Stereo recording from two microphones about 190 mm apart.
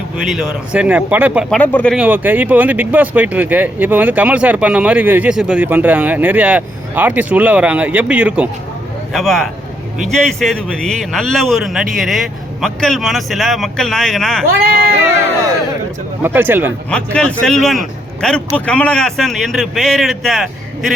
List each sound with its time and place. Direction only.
0.3 s speech: 5° right (ahead or behind)
1.5 s a man's voice: 5° left (ahead or behind)
2.0 s a man's voice: 10° right (ahead or behind)
16.2 s speech: 10° right (ahead or behind)
16.9 s a man's voice: 5° left (ahead or behind)